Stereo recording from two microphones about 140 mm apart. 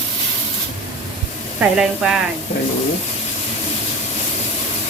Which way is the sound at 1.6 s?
5° right (ahead or behind).